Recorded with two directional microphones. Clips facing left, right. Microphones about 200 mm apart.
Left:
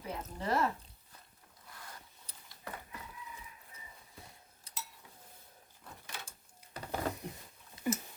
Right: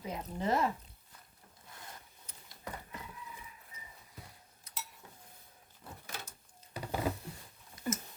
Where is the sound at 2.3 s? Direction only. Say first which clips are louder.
Right 1 dB; 35° left (ahead or behind).